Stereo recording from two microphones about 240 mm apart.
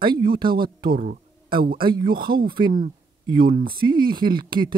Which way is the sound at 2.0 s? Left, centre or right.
Right.